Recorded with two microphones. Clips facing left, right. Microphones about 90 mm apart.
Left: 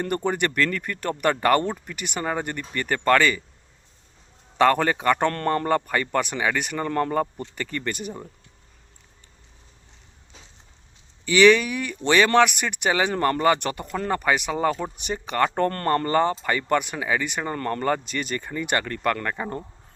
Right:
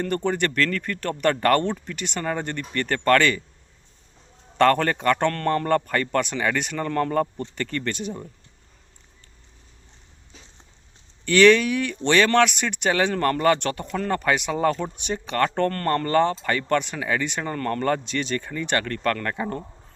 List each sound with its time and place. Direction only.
0.0 s speech: 10° left (ahead or behind)
4.5 s speech: 5° left (ahead or behind)
11.3 s speech: 5° left (ahead or behind)
17.5 s speech: 20° left (ahead or behind)
17.8 s speech: 5° left (ahead or behind)